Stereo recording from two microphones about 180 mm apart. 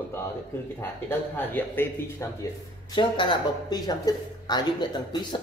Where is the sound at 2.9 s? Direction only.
25° left (ahead or behind).